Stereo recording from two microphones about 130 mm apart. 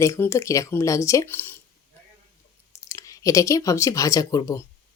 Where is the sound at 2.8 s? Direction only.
25° left (ahead or behind).